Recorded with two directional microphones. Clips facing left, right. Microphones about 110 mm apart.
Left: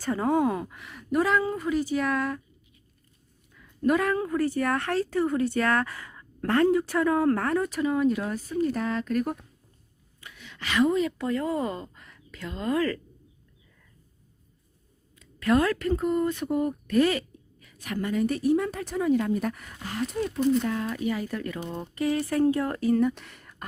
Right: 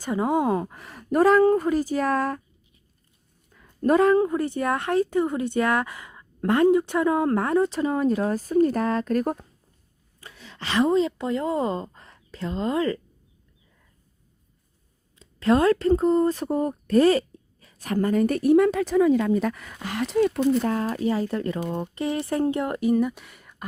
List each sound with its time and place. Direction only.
0.0 s speech: 15° right (ahead or behind); by 2.4 s 40° right (ahead or behind)
3.5 s a woman's voice: 40° right (ahead or behind); by 13.0 s 20° right (ahead or behind)
15.2 s speech: 30° right (ahead or behind); by 20.4 s 80° right
20.6 s a woman's voice: 40° right (ahead or behind); by 23.6 s 5° right (ahead or behind)